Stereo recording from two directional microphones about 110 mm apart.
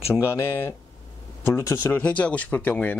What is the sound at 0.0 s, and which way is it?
Speech, 25° left (ahead or behind).